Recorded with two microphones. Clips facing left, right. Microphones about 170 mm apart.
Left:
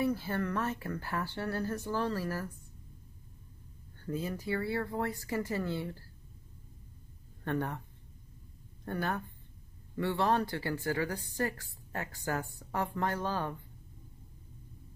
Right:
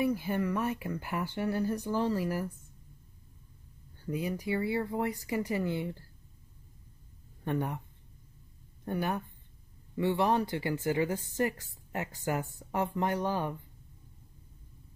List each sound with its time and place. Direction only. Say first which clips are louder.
0.0 s speech: right 2 dB; 15° right (ahead or behind)
4.0 s speech: right 2 dB; 15° right (ahead or behind)
7.4 s speech: right 1 dB; 15° right (ahead or behind)
8.8 s a woman's voice: right 2 dB; 15° right (ahead or behind)